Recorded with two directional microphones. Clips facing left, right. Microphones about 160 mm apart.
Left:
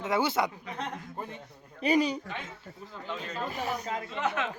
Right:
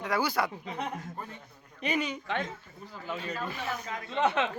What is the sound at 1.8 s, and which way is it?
Speech, 35° left (ahead or behind).